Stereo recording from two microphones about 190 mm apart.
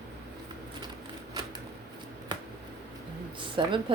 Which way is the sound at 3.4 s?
25° right (ahead or behind).